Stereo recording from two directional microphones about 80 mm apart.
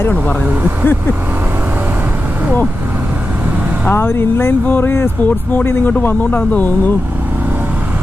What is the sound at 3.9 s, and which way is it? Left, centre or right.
Speech, left.